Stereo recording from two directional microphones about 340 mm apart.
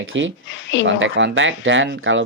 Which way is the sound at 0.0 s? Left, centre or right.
Right.